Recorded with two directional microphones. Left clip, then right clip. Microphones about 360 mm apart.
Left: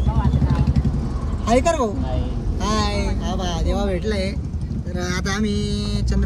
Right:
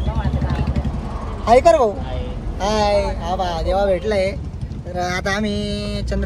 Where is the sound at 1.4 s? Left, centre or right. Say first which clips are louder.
Right 7 dB; centre.